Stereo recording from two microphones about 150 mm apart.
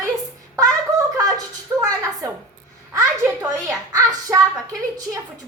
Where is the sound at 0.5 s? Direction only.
20° right (ahead or behind).